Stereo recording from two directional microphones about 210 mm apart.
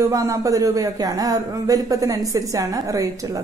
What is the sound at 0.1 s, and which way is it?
Speech, 15° right (ahead or behind).